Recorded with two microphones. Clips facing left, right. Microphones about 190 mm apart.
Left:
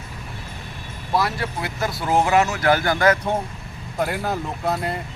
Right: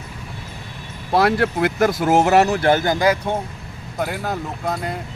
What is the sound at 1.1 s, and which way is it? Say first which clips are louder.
Speech: right 6 dB; 65° right (ahead or behind).